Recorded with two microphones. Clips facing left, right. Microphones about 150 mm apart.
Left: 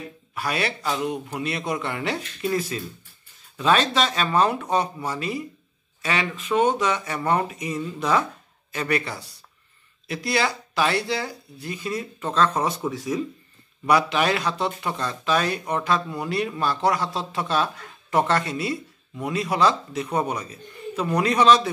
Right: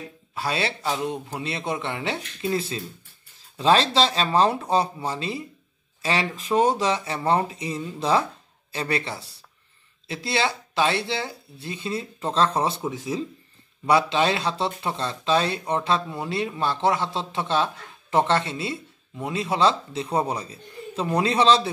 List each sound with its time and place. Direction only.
0.3 s speech: 25° right (ahead or behind)